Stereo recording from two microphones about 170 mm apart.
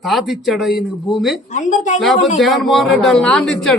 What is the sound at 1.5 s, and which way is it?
Speech, 45° left (ahead or behind).